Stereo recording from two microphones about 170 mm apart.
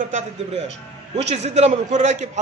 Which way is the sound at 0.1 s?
45° right (ahead or behind).